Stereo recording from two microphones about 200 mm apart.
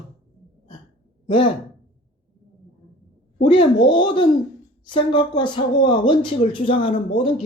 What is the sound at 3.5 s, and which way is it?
Speech, 25° left (ahead or behind).